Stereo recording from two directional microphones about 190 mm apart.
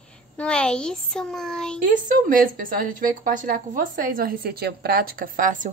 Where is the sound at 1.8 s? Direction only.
45° right (ahead or behind).